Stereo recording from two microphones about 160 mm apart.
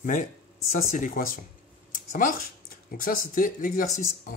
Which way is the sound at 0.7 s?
60° left (ahead or behind).